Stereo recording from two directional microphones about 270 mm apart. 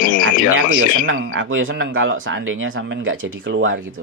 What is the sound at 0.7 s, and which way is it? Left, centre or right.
Speech, right.